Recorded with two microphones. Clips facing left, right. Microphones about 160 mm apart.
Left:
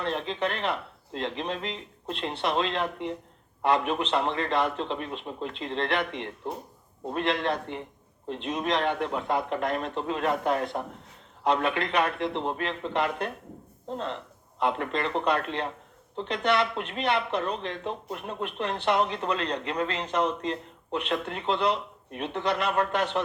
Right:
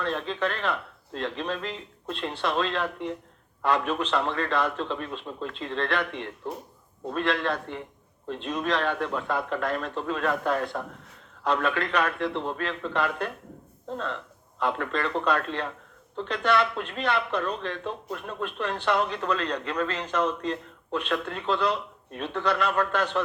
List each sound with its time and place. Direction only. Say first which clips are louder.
0.0 s speech: right 1 dB; 20° left (ahead or behind)